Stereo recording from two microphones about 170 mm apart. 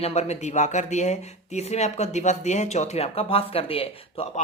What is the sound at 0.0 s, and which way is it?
Speech, 40° left (ahead or behind).